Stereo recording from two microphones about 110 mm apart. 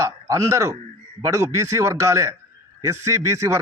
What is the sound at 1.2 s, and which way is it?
A man's voice, 25° right (ahead or behind).